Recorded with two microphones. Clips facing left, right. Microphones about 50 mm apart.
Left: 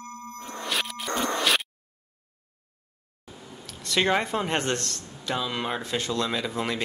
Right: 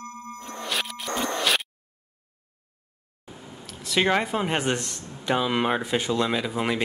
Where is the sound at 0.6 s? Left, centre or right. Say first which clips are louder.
Even; centre.